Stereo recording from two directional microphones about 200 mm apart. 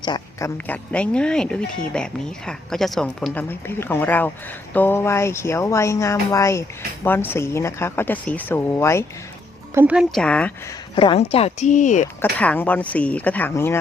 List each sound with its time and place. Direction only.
0.0 s a woman's voice: 20° left (ahead or behind)
9.7 s speech: 5° right (ahead or behind)
10.9 s speech: 25° left (ahead or behind)
12.2 s a woman's voice: 10° left (ahead or behind)